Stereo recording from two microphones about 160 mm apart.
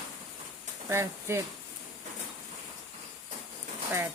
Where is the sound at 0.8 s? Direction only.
15° right (ahead or behind).